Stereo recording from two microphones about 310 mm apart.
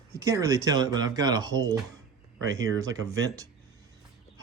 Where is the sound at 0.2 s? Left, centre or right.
Centre.